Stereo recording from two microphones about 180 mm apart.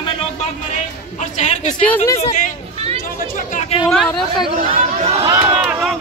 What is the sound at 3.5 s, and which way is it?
Chatter, 40° left (ahead or behind).